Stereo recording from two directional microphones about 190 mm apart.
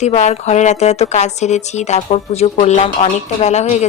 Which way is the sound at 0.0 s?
35° left (ahead or behind).